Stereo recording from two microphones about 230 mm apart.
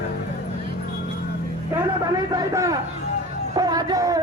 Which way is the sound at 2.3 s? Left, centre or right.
Centre.